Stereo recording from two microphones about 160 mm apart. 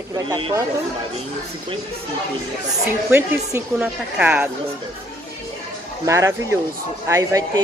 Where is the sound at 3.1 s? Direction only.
10° right (ahead or behind).